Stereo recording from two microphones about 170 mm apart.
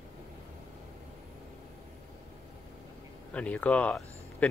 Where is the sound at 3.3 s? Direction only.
10° left (ahead or behind).